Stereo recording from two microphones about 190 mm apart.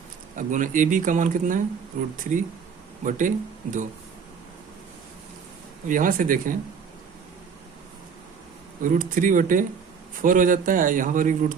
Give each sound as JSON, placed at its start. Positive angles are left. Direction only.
{"t": 0.3, "sound": "a man's voice", "side_deg": -45}
{"t": 5.9, "sound": "a man's voice", "side_deg": -45}
{"t": 8.8, "sound": "a man's voice", "side_deg": -45}